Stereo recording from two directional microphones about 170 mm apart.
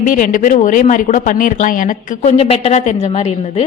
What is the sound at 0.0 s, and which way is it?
A woman's voice, 50° left (ahead or behind).